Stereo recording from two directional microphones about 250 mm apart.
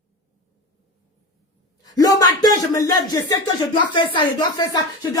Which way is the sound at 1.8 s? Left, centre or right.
Centre.